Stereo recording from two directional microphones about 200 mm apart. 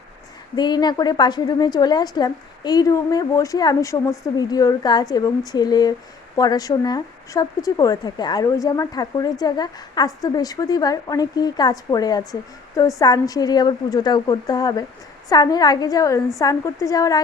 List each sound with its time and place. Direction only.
0.5 s a woman's voice: 20° left (ahead or behind)